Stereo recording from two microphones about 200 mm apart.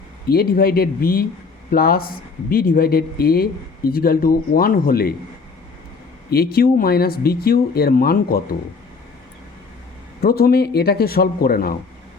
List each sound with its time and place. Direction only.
0.3 s speech: 50° left (ahead or behind)
6.3 s speech: 50° left (ahead or behind)
10.2 s speech: 50° left (ahead or behind)